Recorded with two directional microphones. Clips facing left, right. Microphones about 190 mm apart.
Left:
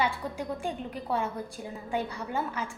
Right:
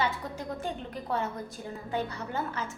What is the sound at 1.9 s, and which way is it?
Speech, 15° left (ahead or behind).